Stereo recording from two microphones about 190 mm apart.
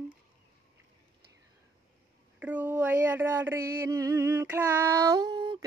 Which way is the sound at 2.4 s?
10° right (ahead or behind).